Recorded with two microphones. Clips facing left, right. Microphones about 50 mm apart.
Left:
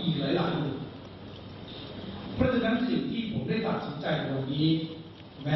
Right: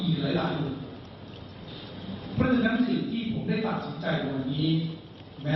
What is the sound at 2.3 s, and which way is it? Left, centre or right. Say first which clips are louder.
A man's voice: right 2 dB; centre.